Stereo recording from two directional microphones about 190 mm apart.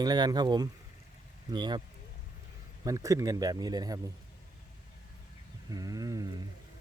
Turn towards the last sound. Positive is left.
turn(degrees=-20)  # may be behind; listen again after turning